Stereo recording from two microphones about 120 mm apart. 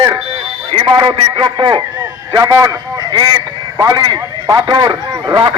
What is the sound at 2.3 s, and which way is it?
A man's voice, 25° right (ahead or behind).